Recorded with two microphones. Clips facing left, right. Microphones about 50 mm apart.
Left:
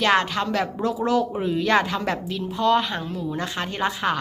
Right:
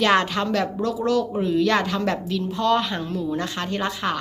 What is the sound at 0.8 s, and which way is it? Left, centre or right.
Speech, left.